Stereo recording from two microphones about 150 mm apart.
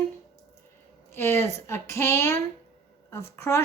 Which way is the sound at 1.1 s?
15° left (ahead or behind).